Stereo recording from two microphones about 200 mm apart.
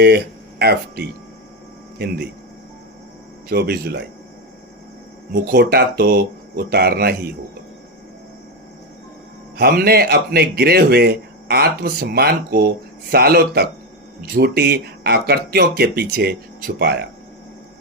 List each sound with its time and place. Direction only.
0.6 s a man's voice: 50° right (ahead or behind)
3.5 s a man's voice: 55° right (ahead or behind)
5.3 s a man's voice: 50° right (ahead or behind)
9.6 s a man's voice: 50° right (ahead or behind)